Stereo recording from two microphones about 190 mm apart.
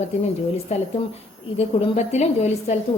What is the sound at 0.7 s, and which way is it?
A woman's voice, 35° left (ahead or behind).